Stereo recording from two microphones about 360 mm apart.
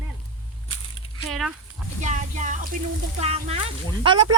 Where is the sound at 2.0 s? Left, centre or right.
Centre.